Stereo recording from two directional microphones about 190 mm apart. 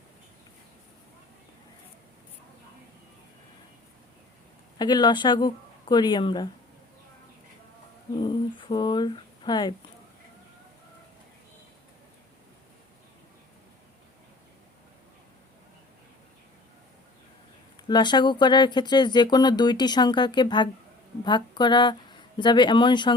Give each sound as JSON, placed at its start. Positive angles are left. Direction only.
{"t": 4.8, "sound": "speech", "side_deg": 25}
{"t": 8.1, "sound": "speech", "side_deg": 25}
{"t": 17.8, "sound": "speech", "side_deg": 25}